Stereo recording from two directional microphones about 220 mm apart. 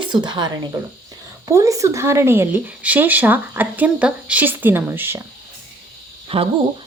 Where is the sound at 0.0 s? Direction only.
20° right (ahead or behind).